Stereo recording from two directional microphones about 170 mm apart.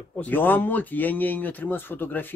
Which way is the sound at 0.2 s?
10° left (ahead or behind).